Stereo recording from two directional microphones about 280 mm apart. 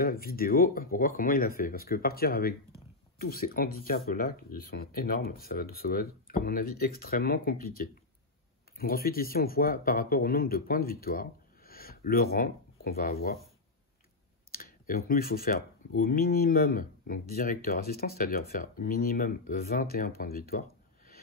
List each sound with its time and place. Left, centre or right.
0.0 s speech: left
14.5 s speech: left